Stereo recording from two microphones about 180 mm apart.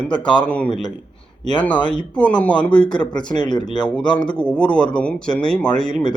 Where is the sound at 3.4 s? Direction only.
25° left (ahead or behind).